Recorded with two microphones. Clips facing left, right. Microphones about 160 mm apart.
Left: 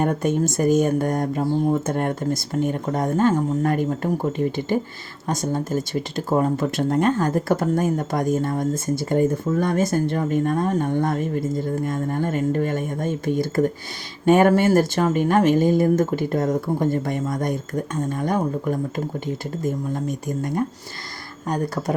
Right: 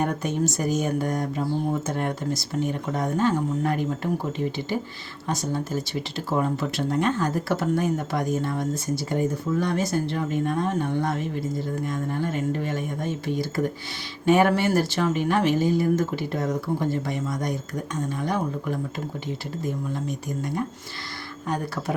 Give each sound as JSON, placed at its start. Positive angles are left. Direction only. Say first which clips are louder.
{"t": 0.0, "sound": "speech", "louder": "left 4 dB", "side_deg": 50}